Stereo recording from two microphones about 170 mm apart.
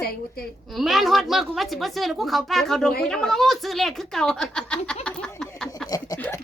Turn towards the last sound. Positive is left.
turn(degrees=20)  # may be behind; listen again after turning